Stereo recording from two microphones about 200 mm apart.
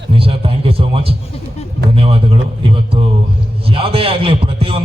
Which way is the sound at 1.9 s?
25° right (ahead or behind).